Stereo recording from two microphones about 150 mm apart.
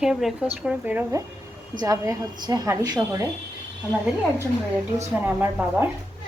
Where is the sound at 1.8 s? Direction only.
25° right (ahead or behind).